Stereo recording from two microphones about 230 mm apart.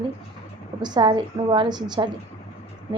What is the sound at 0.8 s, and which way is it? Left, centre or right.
A woman's voice, centre.